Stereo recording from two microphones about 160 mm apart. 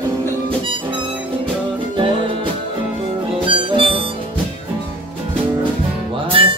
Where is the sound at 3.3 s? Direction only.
30° right (ahead or behind).